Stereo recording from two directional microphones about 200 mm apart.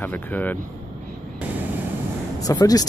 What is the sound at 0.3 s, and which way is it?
Speech, 10° left (ahead or behind).